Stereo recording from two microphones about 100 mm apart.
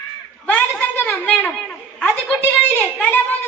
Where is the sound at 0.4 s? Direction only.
20° left (ahead or behind).